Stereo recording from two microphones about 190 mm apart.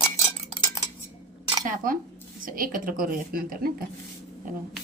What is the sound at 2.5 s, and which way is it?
A woman's voice, 45° right (ahead or behind).